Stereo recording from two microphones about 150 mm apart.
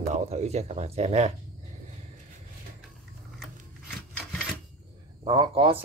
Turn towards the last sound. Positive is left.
turn(degrees=-35)  # may be behind; listen again after turning